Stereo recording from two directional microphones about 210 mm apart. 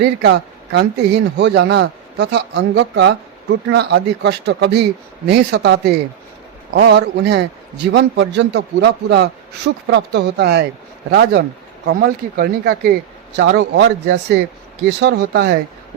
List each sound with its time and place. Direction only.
0.0 s a man's voice: 50° right (ahead or behind)